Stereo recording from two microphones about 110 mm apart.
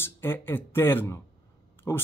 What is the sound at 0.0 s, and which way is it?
Speech, 20° left (ahead or behind).